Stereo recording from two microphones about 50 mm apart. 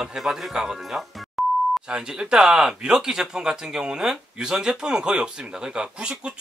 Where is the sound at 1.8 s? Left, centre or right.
Centre.